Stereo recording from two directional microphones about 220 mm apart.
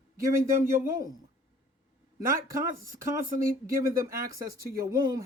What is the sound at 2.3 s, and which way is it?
Speech, 15° right (ahead or behind).